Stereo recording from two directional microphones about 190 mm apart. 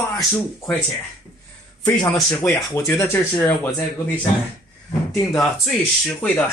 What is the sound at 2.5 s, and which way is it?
Speech, 15° left (ahead or behind).